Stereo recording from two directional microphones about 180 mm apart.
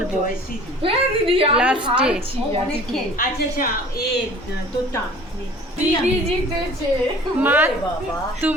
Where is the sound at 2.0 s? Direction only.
5° right (ahead or behind).